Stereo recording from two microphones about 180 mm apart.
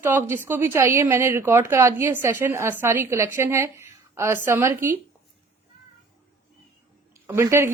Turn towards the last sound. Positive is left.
turn(degrees=-15)  # may be behind; listen again after turning